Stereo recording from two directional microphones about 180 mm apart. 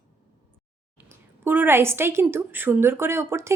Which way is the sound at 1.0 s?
10° right (ahead or behind).